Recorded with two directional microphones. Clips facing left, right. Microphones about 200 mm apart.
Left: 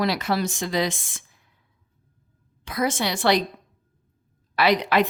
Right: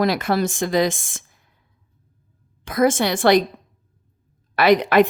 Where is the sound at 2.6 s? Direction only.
50° right (ahead or behind).